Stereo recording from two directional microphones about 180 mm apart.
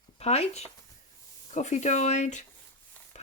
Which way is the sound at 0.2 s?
35° left (ahead or behind).